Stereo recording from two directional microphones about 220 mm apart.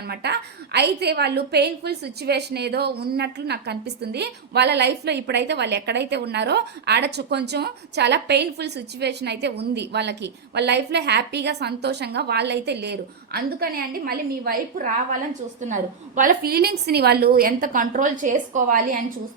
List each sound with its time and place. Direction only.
0.1 s a woman's voice: 50° right (ahead or behind)